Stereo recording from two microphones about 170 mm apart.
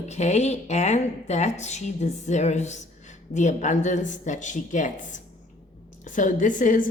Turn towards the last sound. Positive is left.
turn(degrees=50)  # may be behind; listen again after turning